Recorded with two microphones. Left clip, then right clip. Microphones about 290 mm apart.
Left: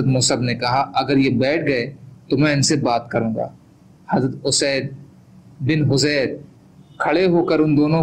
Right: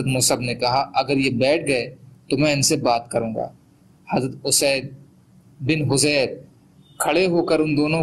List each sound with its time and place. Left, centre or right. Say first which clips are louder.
0.1 s a man's voice: even; centre